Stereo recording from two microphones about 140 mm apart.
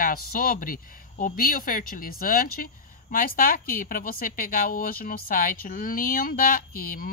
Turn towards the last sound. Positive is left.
turn(degrees=90)